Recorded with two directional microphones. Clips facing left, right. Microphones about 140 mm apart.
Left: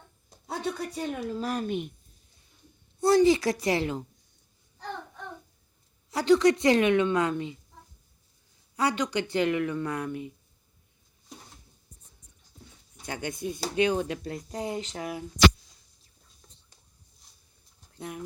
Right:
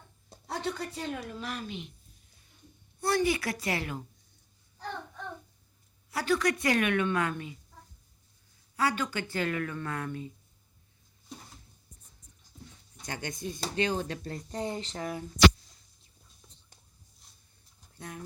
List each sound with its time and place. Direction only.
0.7 s speech: 10° left (ahead or behind)
1.4 s a woman's voice: 40° left (ahead or behind)
3.0 s a woman's voice: 25° left (ahead or behind)
6.1 s a woman's voice: 25° left (ahead or behind)
8.7 s speech: 20° left (ahead or behind)
13.0 s speech: 10° left (ahead or behind)
17.9 s speech: 15° left (ahead or behind)